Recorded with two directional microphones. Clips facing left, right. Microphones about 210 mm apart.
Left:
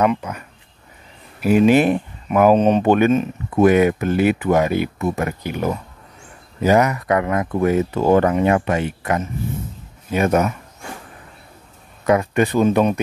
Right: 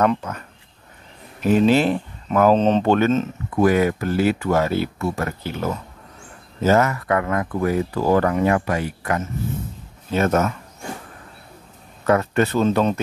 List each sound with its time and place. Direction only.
0.0 s speech: 10° left (ahead or behind)
12.1 s speech: 15° left (ahead or behind)